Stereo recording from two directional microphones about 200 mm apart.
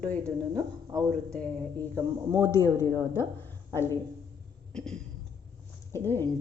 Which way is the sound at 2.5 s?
15° left (ahead or behind).